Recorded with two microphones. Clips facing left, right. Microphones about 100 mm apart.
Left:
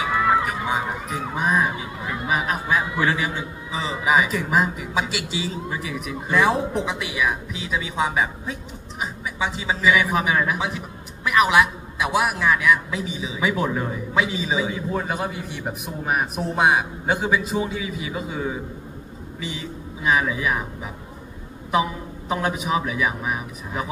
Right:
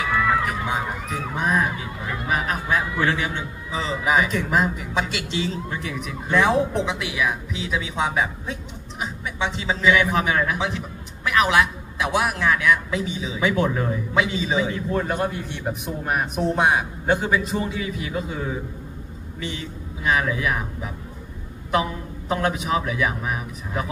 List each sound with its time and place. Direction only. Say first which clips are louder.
0.0 s music: left 1 dB; 20° left (ahead or behind)
0.4 s a sound: left 1 dB; centre (ahead or behind)
1.3 s a man's voice: left 1 dB; 5° left (ahead or behind)